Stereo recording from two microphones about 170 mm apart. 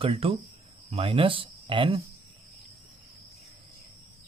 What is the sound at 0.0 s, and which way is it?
Speech, 35° right (ahead or behind).